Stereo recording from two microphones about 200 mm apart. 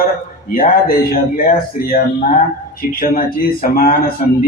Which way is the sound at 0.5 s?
50° left (ahead or behind).